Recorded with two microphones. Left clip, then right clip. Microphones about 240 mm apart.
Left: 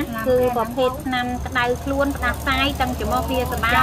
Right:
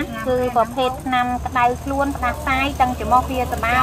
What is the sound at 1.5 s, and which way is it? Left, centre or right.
Speech, right.